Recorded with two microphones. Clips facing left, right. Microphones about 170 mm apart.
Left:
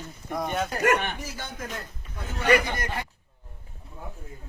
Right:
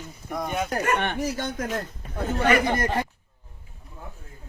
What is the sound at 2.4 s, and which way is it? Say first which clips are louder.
Speech: right 1 dB; 45° right (ahead or behind).